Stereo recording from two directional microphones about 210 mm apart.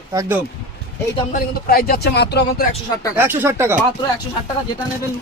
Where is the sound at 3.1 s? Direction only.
10° right (ahead or behind).